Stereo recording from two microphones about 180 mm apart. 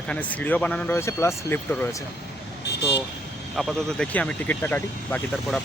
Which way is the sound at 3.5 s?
Centre (ahead or behind).